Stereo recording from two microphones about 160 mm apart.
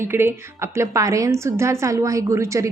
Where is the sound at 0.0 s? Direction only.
15° right (ahead or behind).